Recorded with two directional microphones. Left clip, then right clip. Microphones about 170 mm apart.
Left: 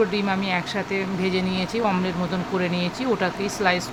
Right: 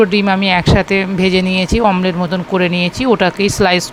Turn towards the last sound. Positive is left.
turn(degrees=-55)  # may be behind; listen again after turning